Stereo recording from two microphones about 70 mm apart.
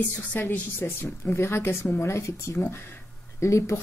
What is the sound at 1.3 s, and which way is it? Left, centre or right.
A woman's voice, left.